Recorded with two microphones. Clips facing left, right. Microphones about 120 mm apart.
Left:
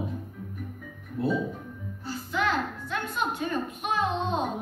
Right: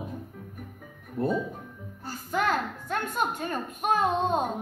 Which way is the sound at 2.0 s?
45° right (ahead or behind).